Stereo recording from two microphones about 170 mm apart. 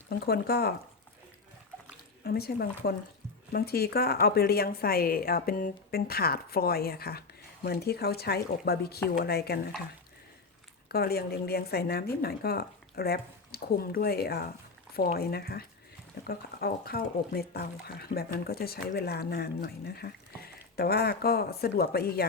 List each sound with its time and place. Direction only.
0.1 s speech: 70° left (ahead or behind)
2.2 s speech: 65° left (ahead or behind)
10.8 s speech: 65° left (ahead or behind)